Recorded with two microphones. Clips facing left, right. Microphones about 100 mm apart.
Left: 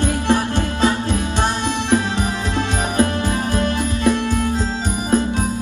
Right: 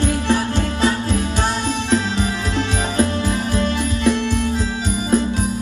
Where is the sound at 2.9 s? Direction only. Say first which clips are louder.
Left 1 dB; 15° left (ahead or behind).